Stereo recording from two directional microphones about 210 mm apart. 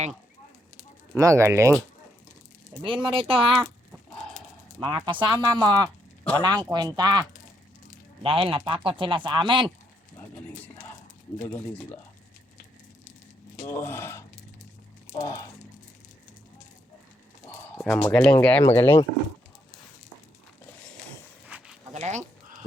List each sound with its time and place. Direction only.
1.1 s speech: 15° right (ahead or behind)
2.8 s speech: 25° right (ahead or behind)
4.8 s speech: 20° right (ahead or behind)
11.4 s speech: 10° left (ahead or behind)
13.6 s speech: 10° left (ahead or behind)
17.7 s a sound: 5° left (ahead or behind)
18.1 s speech: 5° left (ahead or behind)
21.4 s a sound: 5° right (ahead or behind)
21.9 s speech: 35° right (ahead or behind)